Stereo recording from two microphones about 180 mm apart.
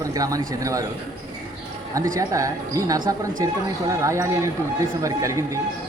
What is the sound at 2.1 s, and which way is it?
A man's voice, 20° right (ahead or behind).